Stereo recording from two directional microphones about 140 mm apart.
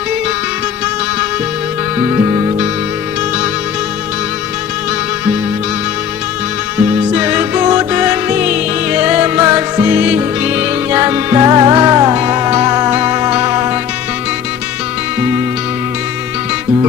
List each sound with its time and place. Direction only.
7.1 s music: 10° right (ahead or behind)
11.4 s music: 25° right (ahead or behind)
12.5 s music: 25° right (ahead or behind)
12.9 s music: 15° right (ahead or behind)
13.5 s music: 30° right (ahead or behind)